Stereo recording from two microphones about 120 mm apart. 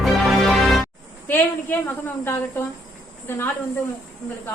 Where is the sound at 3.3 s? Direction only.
20° left (ahead or behind).